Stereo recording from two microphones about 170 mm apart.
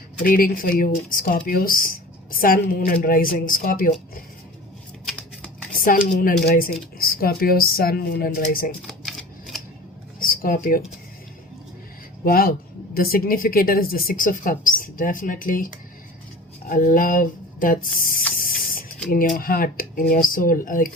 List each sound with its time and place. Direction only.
0.2 s speech: 55° left (ahead or behind)
5.8 s speech: 55° left (ahead or behind)
8.9 s typewriter: centre (ahead or behind)
10.2 s a sound: 55° left (ahead or behind)
12.2 s speech: 60° left (ahead or behind)
18.3 s printer: 55° left (ahead or behind)
19.1 s speech: 55° left (ahead or behind)